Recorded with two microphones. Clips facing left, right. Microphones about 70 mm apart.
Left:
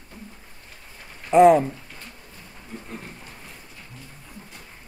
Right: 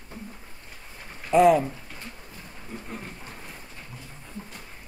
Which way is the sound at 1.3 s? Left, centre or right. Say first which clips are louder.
Left 4 dB; left.